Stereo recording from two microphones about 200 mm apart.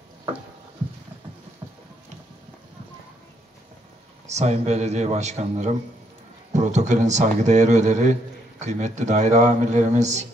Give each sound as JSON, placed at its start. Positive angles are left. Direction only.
{"t": 4.3, "sound": "speech", "side_deg": -35}